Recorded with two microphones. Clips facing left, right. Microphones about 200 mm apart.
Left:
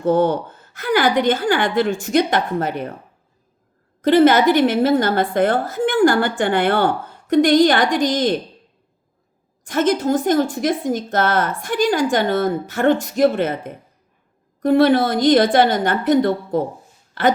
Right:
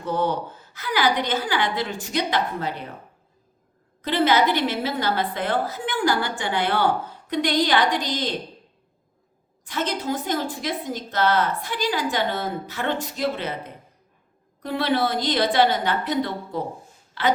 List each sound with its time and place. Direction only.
0.0 s speech: 50° left (ahead or behind)
4.0 s speech: 50° left (ahead or behind)
9.6 s speech: 50° left (ahead or behind)